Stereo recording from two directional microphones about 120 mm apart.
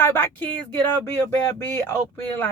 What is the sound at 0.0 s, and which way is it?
A woman's voice, 15° left (ahead or behind).